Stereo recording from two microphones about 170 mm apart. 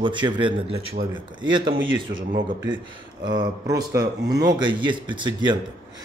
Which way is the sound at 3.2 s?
25° right (ahead or behind).